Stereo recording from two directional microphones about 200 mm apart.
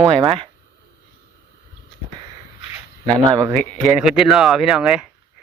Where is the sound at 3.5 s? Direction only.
Centre (ahead or behind).